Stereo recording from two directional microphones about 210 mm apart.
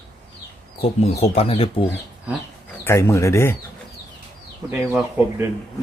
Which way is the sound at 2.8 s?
15° left (ahead or behind).